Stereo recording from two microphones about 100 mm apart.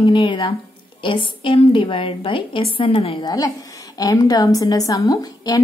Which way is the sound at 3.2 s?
40° left (ahead or behind).